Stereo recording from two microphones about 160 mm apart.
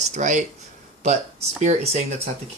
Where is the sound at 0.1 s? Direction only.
50° right (ahead or behind).